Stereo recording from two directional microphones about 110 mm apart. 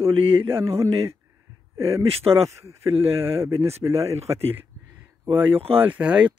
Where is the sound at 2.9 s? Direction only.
60° right (ahead or behind).